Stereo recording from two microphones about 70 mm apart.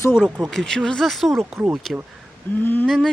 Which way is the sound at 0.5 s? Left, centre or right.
Centre.